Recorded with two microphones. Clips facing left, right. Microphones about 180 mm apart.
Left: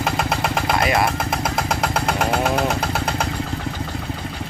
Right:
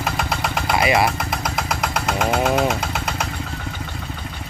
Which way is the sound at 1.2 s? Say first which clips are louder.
Left 2 dB; 25° left (ahead or behind).